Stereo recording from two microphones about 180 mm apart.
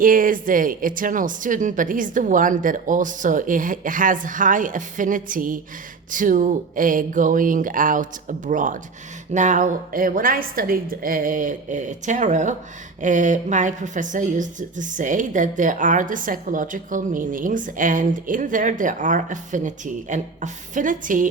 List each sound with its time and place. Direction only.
0.0 s a woman's voice: 50° right (ahead or behind)